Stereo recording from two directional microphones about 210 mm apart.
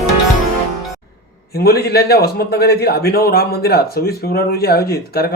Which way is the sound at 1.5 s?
45° left (ahead or behind).